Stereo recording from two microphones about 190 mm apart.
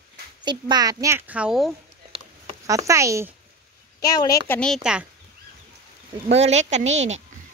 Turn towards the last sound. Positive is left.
turn(degrees=-40)  # may be behind; listen again after turning